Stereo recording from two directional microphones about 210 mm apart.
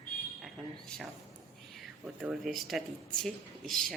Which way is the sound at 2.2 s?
Centre (ahead or behind).